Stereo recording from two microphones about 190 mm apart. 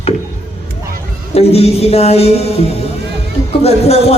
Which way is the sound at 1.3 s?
35° left (ahead or behind).